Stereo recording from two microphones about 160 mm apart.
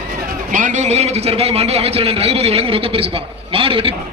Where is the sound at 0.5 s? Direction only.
50° right (ahead or behind); by 3.9 s 35° right (ahead or behind).